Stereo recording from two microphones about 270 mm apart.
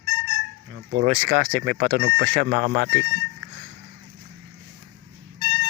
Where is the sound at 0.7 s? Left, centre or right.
Right.